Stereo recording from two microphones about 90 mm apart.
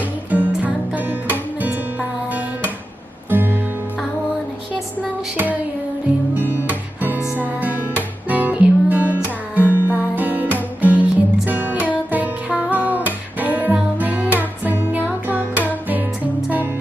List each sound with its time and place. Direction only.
0.0 s music: 15° right (ahead or behind)
4.9 s music: 15° right (ahead or behind)
6.6 s music: 20° right (ahead or behind)